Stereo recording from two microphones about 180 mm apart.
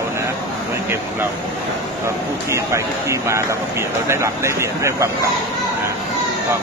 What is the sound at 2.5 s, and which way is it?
Speech, 15° right (ahead or behind).